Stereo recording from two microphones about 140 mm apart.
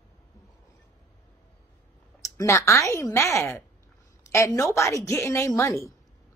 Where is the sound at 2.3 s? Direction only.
20° left (ahead or behind).